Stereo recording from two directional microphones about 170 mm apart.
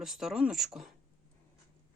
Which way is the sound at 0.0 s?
Centre (ahead or behind).